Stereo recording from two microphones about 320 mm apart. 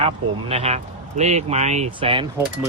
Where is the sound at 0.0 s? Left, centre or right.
Centre.